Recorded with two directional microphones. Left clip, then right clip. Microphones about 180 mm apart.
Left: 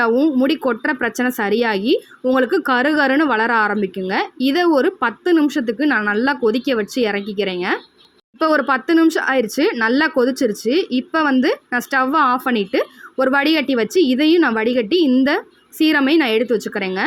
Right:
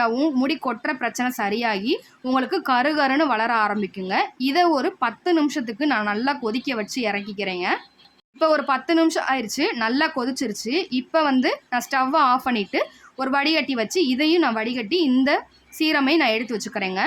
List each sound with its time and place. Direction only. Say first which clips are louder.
0.0 s speech: left 5 dB; 5° left (ahead or behind)